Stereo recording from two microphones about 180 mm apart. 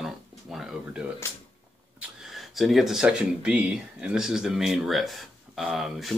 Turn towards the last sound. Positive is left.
turn(degrees=0)  # may be behind; listen again after turning